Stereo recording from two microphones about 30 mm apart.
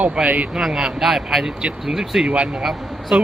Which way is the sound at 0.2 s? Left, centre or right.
Centre.